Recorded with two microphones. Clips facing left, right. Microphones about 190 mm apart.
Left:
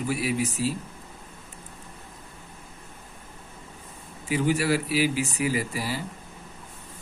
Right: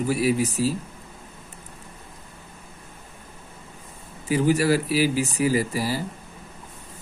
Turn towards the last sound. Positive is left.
turn(degrees=-40)  # may be behind; listen again after turning